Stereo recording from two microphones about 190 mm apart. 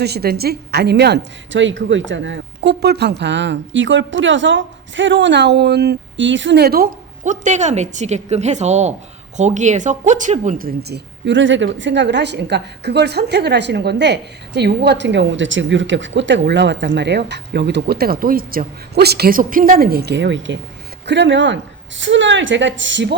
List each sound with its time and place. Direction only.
0.0 s a woman's voice: 55° right (ahead or behind); by 23.1 s 70° right (ahead or behind)